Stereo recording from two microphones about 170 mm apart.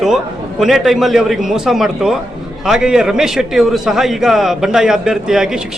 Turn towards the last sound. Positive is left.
turn(degrees=-5)  # may be behind; listen again after turning